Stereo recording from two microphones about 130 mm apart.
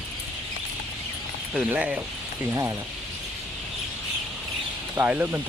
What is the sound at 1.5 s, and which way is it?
Speech, 10° right (ahead or behind).